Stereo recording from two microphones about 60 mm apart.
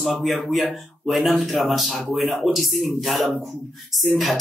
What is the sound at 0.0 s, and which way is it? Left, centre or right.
Speech, centre.